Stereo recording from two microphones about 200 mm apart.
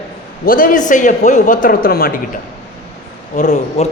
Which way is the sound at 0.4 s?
45° left (ahead or behind).